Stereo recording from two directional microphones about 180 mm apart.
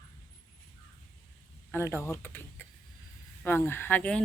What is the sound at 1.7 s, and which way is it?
Speech, 15° left (ahead or behind).